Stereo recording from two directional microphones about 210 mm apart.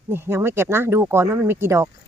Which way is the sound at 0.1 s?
10° right (ahead or behind).